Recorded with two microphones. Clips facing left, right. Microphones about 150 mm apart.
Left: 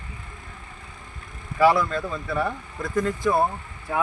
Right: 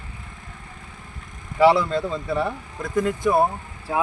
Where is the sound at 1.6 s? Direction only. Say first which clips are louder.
Right 2 dB; 25° right (ahead or behind).